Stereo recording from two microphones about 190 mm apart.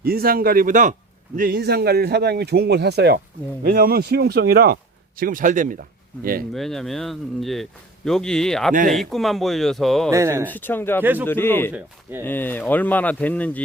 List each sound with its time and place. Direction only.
0.0 s speech: 50° right (ahead or behind)
1.4 s a man's voice: 50° right (ahead or behind)
6.5 s speech: centre (ahead or behind)
10.1 s speech: 15° right (ahead or behind)
10.4 s speech: 10° left (ahead or behind)
11.0 s speech: 10° right (ahead or behind)
11.3 s speech: 10° left (ahead or behind)